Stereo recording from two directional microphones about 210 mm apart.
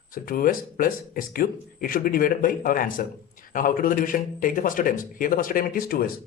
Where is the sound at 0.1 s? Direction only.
40° left (ahead or behind).